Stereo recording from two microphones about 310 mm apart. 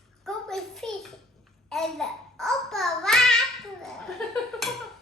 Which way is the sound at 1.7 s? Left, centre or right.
Centre.